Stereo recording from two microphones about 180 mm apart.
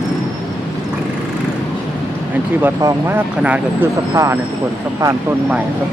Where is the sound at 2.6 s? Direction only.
10° right (ahead or behind).